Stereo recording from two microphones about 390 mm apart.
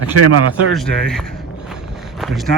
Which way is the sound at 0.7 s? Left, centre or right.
Centre.